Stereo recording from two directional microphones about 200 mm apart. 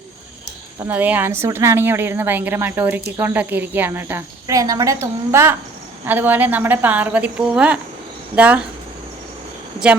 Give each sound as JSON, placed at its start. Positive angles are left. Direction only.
{"t": 0.9, "sound": "speech", "side_deg": -10}